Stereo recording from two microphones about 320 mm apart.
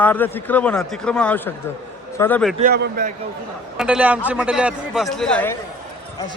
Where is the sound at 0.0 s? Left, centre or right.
Centre.